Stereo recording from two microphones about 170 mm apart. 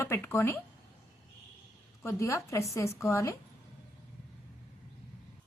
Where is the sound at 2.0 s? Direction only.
15° left (ahead or behind).